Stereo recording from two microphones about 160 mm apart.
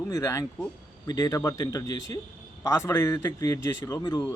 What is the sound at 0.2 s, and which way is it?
Speech, 20° left (ahead or behind).